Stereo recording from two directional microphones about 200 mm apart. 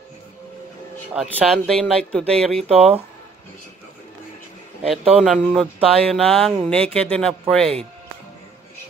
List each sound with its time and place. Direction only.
1.1 s speech: centre (ahead or behind)
2.6 s speech: 30° right (ahead or behind)
5.2 s speech: centre (ahead or behind)